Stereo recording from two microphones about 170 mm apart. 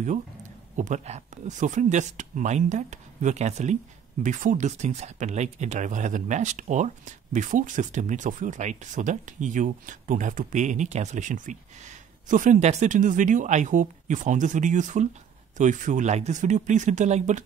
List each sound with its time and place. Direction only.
0.7 s speech: 45° right (ahead or behind)